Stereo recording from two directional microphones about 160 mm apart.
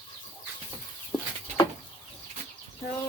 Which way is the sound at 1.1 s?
25° left (ahead or behind).